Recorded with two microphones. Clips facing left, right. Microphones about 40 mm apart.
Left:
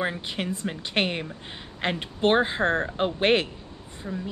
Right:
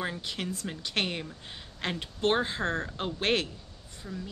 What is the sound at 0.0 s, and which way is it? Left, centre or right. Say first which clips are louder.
Speech: left 5 dB; left.